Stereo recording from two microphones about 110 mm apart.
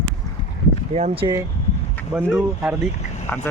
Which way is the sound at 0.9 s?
80° right.